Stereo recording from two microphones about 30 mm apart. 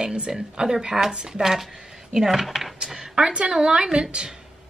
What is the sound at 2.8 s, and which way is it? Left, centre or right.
A woman's voice, right.